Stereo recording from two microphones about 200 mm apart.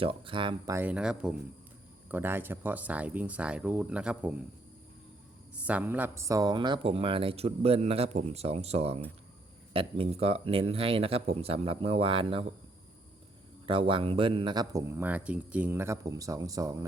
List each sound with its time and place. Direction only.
0.0 s speech: 25° right (ahead or behind); by 4.4 s 5° right (ahead or behind)
5.6 s speech: 10° right (ahead or behind); by 12.5 s 25° right (ahead or behind)
13.7 s speech: 25° right (ahead or behind)